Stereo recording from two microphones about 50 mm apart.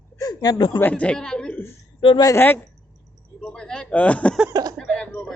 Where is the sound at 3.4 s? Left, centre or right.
Centre.